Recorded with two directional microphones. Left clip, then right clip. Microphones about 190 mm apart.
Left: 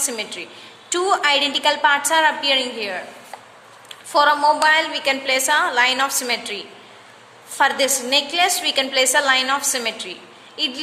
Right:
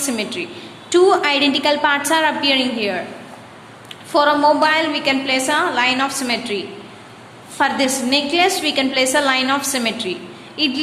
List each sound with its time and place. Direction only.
0.0 s a woman's voice: 25° left (ahead or behind)
4.1 s a woman's voice: 25° left (ahead or behind)